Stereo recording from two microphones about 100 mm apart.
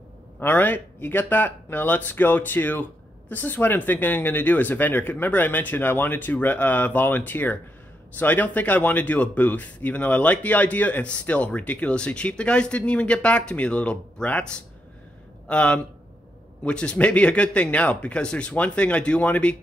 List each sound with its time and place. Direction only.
0.4 s a man's voice: 20° left (ahead or behind)